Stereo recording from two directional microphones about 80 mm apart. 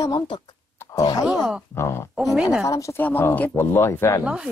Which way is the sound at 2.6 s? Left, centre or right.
Left.